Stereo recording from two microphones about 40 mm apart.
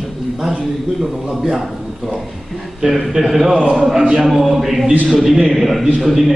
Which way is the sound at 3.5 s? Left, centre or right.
Centre.